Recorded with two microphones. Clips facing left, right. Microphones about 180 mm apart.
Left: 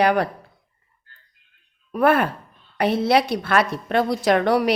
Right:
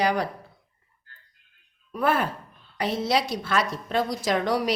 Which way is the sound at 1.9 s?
60° left (ahead or behind).